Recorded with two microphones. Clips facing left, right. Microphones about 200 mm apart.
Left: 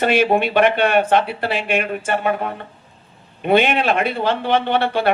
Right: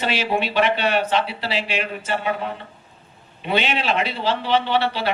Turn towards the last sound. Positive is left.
turn(degrees=50)  # may be behind; listen again after turning